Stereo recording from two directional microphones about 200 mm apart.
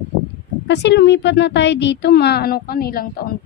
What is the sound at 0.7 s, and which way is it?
A woman's voice, 60° left (ahead or behind).